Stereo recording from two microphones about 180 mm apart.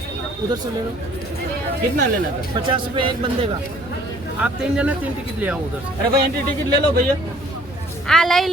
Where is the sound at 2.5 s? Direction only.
30° right (ahead or behind).